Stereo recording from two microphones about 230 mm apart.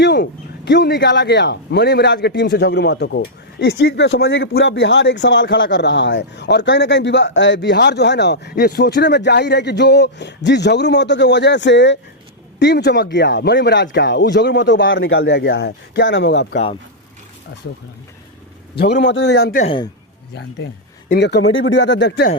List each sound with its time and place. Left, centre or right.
0.0 s speech: left
18.8 s speech: left
19.6 s a man's voice: left
21.1 s speech: left